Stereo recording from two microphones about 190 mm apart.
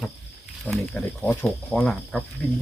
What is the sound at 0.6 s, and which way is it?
Speech, 5° left (ahead or behind).